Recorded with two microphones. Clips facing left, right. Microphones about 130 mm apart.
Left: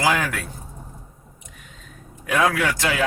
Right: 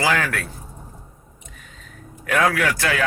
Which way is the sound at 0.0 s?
15° left (ahead or behind).